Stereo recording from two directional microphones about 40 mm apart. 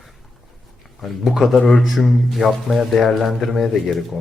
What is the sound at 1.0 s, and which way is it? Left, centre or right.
A man's voice, centre.